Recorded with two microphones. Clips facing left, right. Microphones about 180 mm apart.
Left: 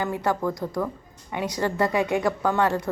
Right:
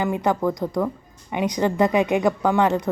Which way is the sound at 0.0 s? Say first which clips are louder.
Right 4 dB; 20° right (ahead or behind).